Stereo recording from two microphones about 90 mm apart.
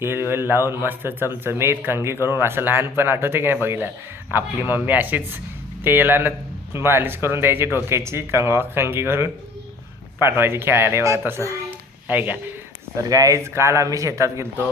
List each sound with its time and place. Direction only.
0.0 s speech: 25° right (ahead or behind)
13.0 s speech: 40° right (ahead or behind)